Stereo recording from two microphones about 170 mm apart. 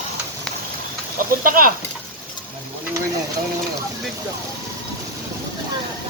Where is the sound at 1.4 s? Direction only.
55° right (ahead or behind).